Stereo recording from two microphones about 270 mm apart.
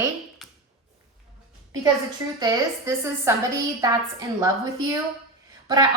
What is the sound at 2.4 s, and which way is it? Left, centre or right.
Speech, centre.